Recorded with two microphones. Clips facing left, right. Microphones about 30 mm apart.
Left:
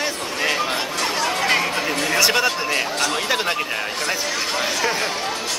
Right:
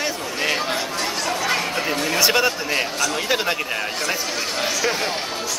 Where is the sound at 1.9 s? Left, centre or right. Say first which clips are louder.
Left 1 dB; left.